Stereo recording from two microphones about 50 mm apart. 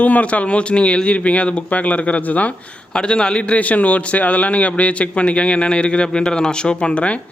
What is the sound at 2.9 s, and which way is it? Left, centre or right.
Speech, centre.